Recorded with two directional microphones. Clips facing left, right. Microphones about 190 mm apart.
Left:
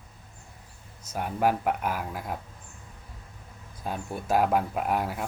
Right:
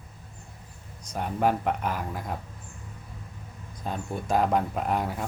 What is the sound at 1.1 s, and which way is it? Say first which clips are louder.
Speech: even; 5° left (ahead or behind).